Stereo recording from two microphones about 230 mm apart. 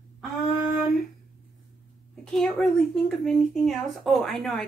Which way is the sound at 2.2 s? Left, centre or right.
Centre.